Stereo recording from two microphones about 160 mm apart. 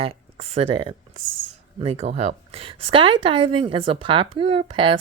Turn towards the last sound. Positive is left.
turn(degrees=-35)  # may be behind; listen again after turning